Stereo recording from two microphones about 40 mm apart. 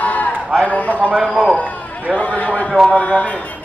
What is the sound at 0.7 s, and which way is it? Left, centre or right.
Speech, left.